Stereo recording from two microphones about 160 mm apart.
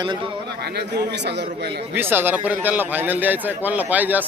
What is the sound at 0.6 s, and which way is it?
A man's voice, 90° right.